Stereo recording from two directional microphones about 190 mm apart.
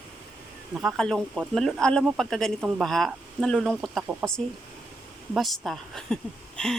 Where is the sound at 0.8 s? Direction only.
Centre (ahead or behind).